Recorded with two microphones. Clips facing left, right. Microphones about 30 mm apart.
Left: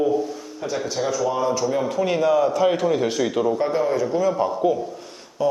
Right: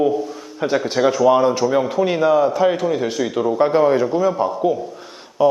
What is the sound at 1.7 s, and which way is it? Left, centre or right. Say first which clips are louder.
A man's voice: right 4 dB; centre.